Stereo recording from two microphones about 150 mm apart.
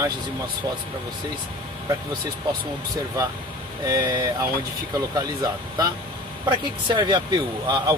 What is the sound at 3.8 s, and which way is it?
Speech, 20° right (ahead or behind).